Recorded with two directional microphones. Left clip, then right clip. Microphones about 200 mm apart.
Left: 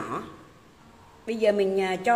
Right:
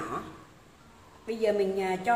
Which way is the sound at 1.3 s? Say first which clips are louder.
Left 4 dB; 55° left (ahead or behind).